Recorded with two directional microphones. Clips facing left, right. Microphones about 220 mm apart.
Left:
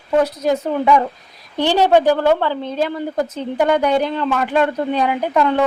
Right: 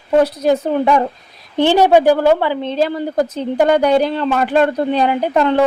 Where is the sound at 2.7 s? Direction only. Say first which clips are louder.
Right 3 dB; 35° right (ahead or behind).